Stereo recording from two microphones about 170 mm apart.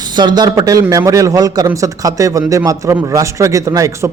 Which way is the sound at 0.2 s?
25° right (ahead or behind).